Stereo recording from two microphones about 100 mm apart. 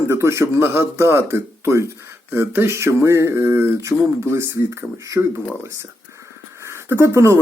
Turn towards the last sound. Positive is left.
turn(degrees=-25)  # may be behind; listen again after turning